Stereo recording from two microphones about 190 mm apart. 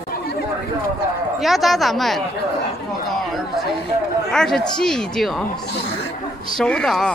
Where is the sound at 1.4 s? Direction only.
Centre (ahead or behind).